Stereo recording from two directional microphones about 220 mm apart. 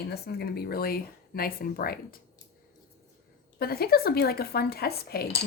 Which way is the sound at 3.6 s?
45° left (ahead or behind).